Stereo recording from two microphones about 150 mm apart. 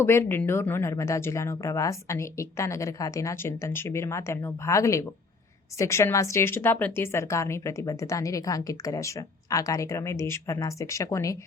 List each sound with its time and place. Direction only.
0.0 s speech: 15° left (ahead or behind)